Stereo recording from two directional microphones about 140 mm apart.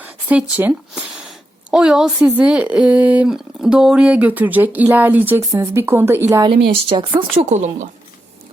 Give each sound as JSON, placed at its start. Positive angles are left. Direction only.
{"t": 0.0, "sound": "a woman's voice", "side_deg": -10}
{"t": 6.5, "sound": "speech", "side_deg": -35}
{"t": 7.5, "sound": "speech", "side_deg": -55}